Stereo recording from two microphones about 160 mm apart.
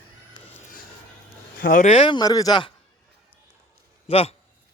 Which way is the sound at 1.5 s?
65° left (ahead or behind).